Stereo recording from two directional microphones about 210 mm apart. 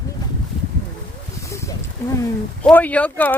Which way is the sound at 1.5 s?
15° left (ahead or behind).